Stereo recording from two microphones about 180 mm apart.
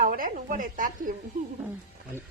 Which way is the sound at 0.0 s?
50° right (ahead or behind).